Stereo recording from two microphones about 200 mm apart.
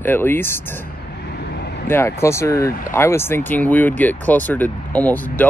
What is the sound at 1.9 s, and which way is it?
Speech, 15° left (ahead or behind).